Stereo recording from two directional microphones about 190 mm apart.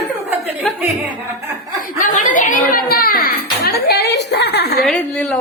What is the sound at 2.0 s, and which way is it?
A child's voice, 45° left (ahead or behind).